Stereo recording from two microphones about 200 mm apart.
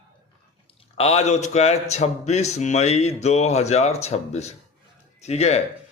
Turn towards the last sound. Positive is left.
turn(degrees=30)  # may be behind; listen again after turning